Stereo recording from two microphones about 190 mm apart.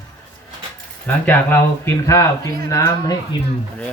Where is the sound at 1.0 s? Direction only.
10° left (ahead or behind).